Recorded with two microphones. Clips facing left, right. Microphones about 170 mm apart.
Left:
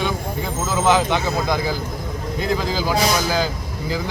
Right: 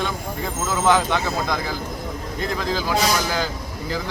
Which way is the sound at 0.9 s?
15° left (ahead or behind).